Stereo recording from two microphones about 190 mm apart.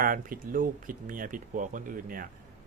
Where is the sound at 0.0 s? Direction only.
45° right (ahead or behind).